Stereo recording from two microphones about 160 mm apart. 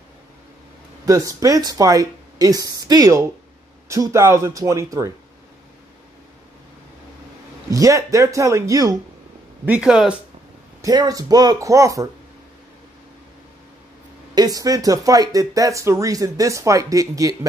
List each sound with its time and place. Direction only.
1.0 s speech: 20° right (ahead or behind)
7.7 s speech: 20° right (ahead or behind)
9.7 s speech: 5° right (ahead or behind)
10.8 s speech: 25° right (ahead or behind)
14.3 s speech: 25° right (ahead or behind)